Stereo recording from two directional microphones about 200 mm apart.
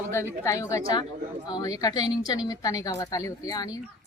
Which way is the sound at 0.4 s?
15° left (ahead or behind).